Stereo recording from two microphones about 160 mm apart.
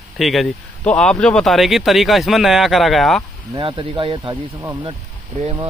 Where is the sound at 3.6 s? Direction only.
40° right (ahead or behind).